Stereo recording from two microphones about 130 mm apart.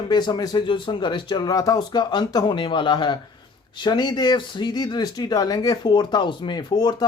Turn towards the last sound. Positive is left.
turn(degrees=35)  # may be behind; listen again after turning